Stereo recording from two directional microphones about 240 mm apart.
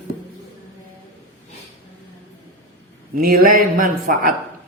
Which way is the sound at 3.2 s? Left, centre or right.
Right.